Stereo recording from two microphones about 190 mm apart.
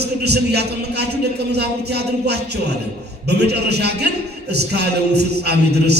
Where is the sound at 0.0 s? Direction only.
60° right (ahead or behind).